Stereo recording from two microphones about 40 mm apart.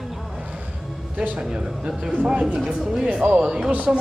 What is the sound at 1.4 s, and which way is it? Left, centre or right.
Speech, right.